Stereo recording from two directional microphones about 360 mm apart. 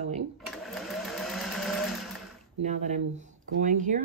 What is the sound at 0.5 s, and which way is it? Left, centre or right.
Sewing machine, centre.